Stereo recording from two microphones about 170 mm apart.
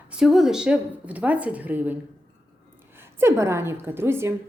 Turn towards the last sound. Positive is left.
turn(degrees=-15)  # may be behind; listen again after turning